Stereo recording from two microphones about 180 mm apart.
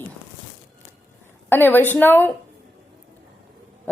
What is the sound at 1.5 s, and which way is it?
Speech, 10° left (ahead or behind).